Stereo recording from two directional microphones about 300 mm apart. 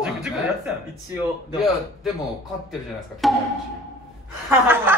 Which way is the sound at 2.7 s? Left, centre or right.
Centre.